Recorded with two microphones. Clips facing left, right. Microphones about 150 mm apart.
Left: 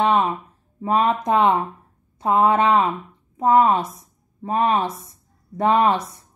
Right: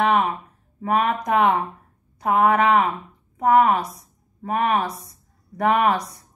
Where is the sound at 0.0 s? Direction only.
30° left (ahead or behind).